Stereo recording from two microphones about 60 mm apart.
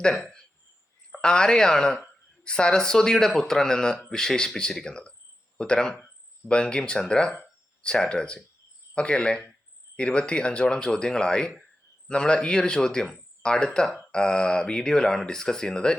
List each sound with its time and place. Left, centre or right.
1.1 s speech: centre